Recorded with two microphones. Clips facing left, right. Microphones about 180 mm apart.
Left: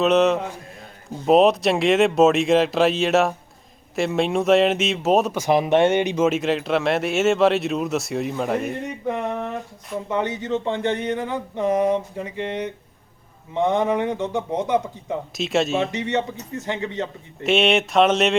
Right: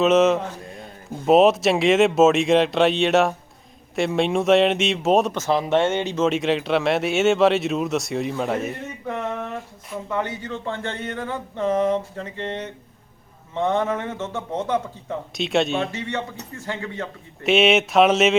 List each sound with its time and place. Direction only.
0.0 s speech: centre (ahead or behind)
5.4 s speech: 15° left (ahead or behind); by 8.7 s centre (ahead or behind)
9.0 s a sound: 15° left (ahead or behind)
10.1 s speech: 20° left (ahead or behind)
15.4 s speech: centre (ahead or behind)
15.9 s speech: 20° left (ahead or behind)
17.4 s speech: centre (ahead or behind)